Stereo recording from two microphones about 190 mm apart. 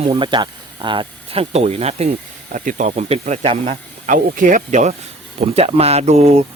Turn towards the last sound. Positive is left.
turn(degrees=-35)  # may be behind; listen again after turning